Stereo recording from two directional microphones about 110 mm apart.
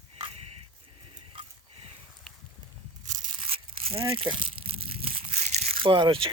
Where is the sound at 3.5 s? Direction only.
60° right (ahead or behind).